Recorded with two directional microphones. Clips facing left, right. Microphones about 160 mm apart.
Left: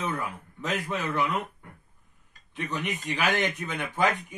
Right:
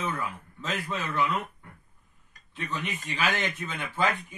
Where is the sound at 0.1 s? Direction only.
15° left (ahead or behind).